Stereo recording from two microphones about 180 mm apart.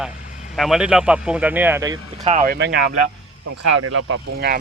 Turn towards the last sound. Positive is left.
turn(degrees=-65)  # may be behind; listen again after turning